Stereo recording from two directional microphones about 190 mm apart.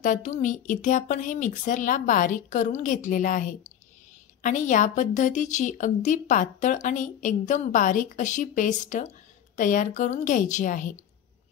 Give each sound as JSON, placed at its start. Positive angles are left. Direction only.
{"t": 0.0, "sound": "a woman's voice", "side_deg": 40}